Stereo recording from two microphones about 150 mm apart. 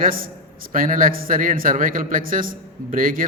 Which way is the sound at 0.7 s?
65° right (ahead or behind).